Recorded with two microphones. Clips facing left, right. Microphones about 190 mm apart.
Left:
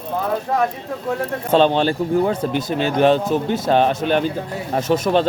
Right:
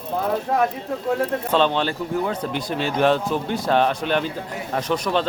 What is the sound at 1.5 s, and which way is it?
A man's voice, 45° left (ahead or behind).